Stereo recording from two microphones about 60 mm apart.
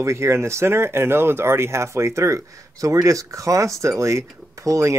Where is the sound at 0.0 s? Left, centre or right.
Right.